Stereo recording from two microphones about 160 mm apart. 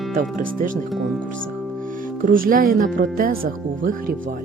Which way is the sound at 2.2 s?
60° right (ahead or behind).